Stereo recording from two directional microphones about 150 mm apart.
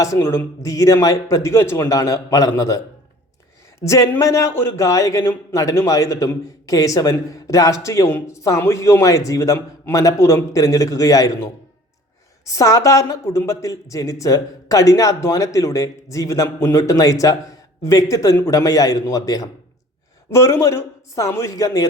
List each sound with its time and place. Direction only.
0.0 s a man's voice: 20° left (ahead or behind)
3.8 s a man's voice: 20° left (ahead or behind)
12.5 s a man's voice: 20° left (ahead or behind)